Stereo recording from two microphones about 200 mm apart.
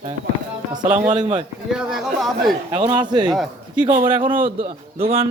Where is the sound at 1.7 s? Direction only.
5° right (ahead or behind).